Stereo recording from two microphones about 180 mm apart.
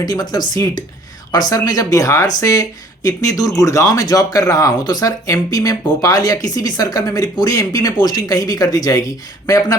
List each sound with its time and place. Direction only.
0.0 s speech: 20° left (ahead or behind)